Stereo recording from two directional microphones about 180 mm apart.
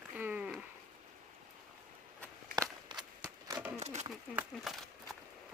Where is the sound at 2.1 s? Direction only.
15° right (ahead or behind).